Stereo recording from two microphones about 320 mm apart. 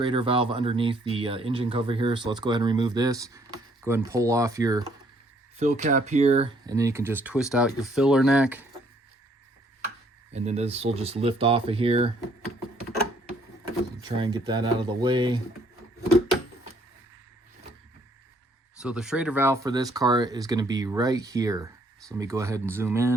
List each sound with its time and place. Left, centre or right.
0.0 s speech: centre
5.5 s speech: right; by 8.6 s centre
10.3 s speech: centre
14.2 s speech: centre
18.8 s speech: centre